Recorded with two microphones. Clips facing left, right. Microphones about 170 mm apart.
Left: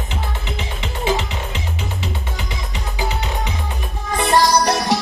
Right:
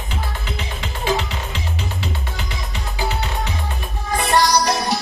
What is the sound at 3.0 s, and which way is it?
Music, 15° left (ahead or behind).